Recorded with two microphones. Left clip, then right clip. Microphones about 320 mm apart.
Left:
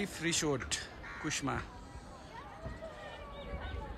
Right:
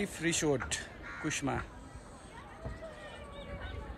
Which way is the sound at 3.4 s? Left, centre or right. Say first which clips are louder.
Even; left.